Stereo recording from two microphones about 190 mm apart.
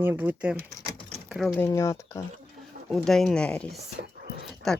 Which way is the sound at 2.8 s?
Centre (ahead or behind).